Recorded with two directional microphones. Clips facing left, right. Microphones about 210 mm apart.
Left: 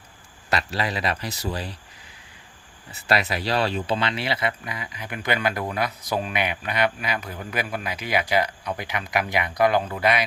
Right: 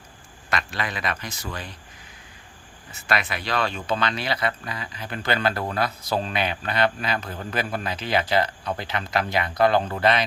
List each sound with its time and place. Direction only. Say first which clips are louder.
0.5 s speech: left 3 dB; 35° left (ahead or behind)
2.9 s speech: left 3 dB; 35° left (ahead or behind); by 10.2 s 10° left (ahead or behind)